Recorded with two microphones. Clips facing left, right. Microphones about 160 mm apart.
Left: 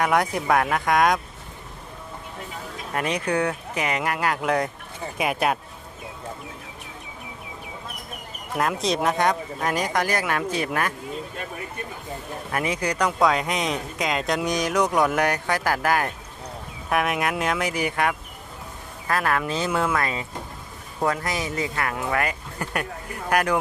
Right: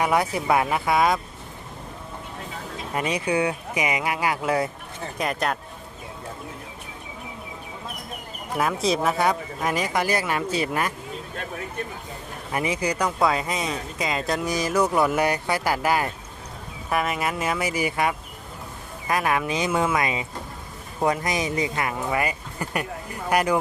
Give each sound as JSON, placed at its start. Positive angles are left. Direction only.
{"t": 0.0, "sound": "speech", "side_deg": -5}
{"t": 2.9, "sound": "speech", "side_deg": -10}
{"t": 5.1, "sound": "speech", "side_deg": 10}
{"t": 8.5, "sound": "speech", "side_deg": 0}
{"t": 12.5, "sound": "speech", "side_deg": -10}